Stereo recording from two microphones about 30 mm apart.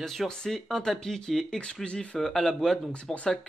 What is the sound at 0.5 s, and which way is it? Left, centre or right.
Speech, centre.